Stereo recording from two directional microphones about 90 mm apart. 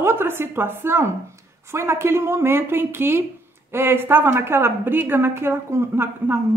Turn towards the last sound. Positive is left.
turn(degrees=-25)  # may be behind; listen again after turning